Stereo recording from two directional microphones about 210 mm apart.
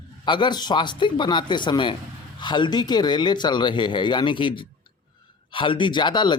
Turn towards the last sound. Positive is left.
turn(degrees=20)  # may be behind; listen again after turning